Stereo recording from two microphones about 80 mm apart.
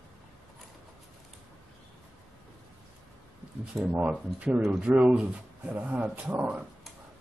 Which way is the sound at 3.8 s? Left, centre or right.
Right.